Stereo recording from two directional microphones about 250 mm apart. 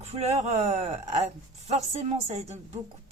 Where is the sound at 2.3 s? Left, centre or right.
Right.